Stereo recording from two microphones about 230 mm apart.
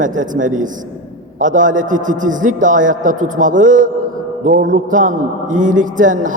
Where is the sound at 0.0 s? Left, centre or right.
Right.